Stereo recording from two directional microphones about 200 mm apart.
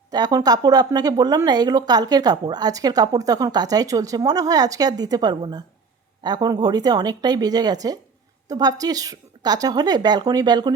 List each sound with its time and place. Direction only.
0.1 s speech: 20° right (ahead or behind)